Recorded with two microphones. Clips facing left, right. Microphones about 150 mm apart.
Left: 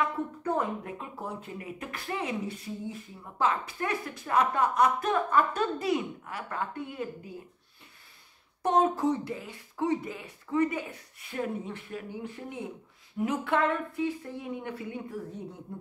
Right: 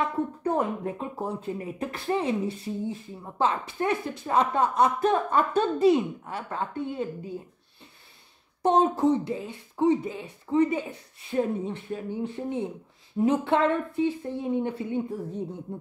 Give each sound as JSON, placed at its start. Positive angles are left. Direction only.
{"t": 0.0, "sound": "speech", "side_deg": -30}
{"t": 8.6, "sound": "speech", "side_deg": -25}